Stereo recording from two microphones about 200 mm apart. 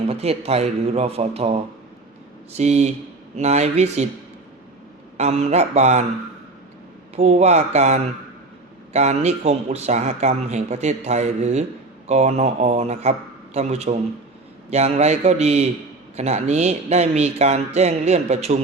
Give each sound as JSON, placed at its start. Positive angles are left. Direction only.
{"t": 0.0, "sound": "speech", "side_deg": -30}
{"t": 5.1, "sound": "speech", "side_deg": -35}
{"t": 7.2, "sound": "speech", "side_deg": -35}